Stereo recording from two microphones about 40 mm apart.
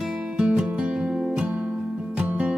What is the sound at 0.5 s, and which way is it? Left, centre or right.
Music, right.